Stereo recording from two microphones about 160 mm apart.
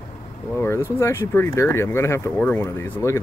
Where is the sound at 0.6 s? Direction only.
15° left (ahead or behind).